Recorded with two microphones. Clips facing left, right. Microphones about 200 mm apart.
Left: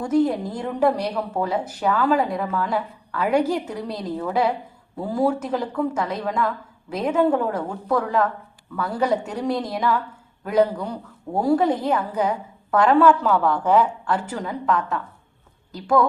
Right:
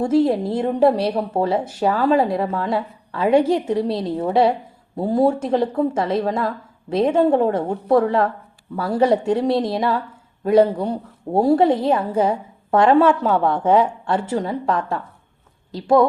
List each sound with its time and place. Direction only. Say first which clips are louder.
0.0 s a woman's voice: right 3 dB; 25° right (ahead or behind)